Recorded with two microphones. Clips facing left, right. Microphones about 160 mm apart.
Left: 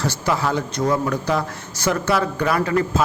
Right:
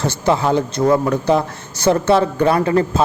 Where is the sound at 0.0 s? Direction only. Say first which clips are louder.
Right 5 dB; 25° right (ahead or behind).